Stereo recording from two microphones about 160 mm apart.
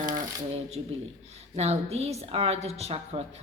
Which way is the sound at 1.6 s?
40° right (ahead or behind).